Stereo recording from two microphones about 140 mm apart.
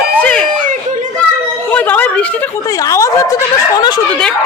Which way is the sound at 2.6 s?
25° left (ahead or behind).